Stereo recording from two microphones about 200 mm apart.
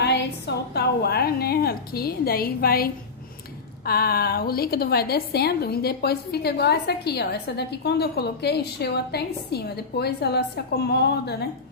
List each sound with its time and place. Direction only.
0.0 s a woman's voice: 55° left (ahead or behind)